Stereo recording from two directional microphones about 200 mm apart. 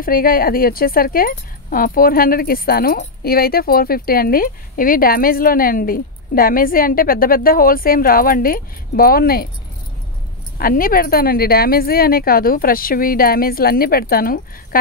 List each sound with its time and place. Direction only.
0.0 s speech: 45° left (ahead or behind)
10.6 s speech: 45° left (ahead or behind)